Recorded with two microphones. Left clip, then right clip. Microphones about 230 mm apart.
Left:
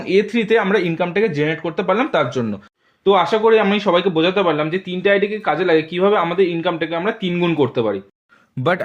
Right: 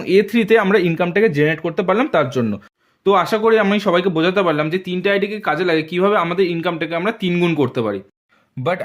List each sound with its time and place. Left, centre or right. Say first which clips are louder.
0.0 s speech: right 2 dB; right
8.6 s speech: left 2 dB; centre